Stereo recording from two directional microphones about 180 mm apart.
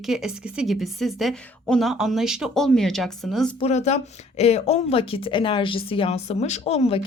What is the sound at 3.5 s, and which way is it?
A woman's voice, 35° left (ahead or behind).